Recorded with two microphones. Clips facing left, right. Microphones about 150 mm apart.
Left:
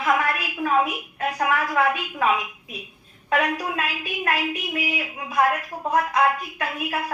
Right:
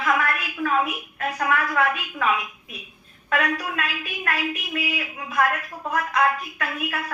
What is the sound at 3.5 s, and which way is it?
A woman's voice, 15° left (ahead or behind).